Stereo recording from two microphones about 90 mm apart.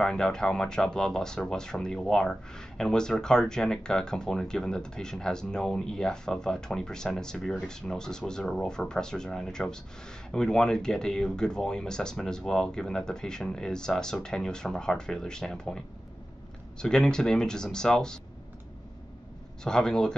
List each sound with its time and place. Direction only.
0.0 s speech: 5° left (ahead or behind)
16.8 s speech: 5° left (ahead or behind)
19.6 s speech: 5° left (ahead or behind)